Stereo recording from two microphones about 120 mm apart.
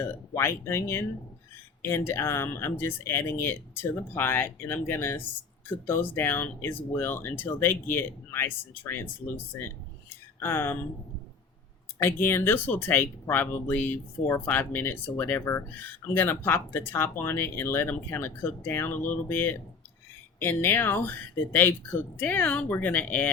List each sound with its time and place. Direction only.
0.0 s speech: 20° left (ahead or behind)
11.9 s speech: 20° left (ahead or behind)